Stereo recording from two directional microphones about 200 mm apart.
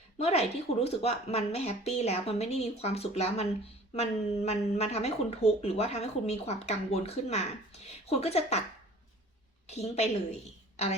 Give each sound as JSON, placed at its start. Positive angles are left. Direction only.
{"t": 0.2, "sound": "speech", "side_deg": 30}
{"t": 3.9, "sound": "a sound", "side_deg": 30}
{"t": 4.4, "sound": "speech", "side_deg": 30}
{"t": 9.6, "sound": "speech", "side_deg": 30}